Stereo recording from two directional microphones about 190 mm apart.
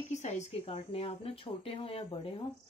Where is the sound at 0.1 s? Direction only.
35° left (ahead or behind).